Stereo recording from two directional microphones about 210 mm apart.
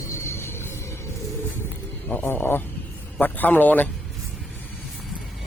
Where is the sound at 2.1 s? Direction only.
10° left (ahead or behind).